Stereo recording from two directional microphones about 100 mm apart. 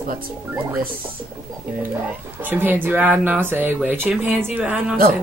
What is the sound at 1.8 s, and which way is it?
Speech, 20° right (ahead or behind).